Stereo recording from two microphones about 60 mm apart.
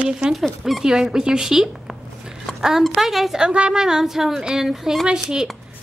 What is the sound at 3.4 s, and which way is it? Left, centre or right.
A woman's voice, centre.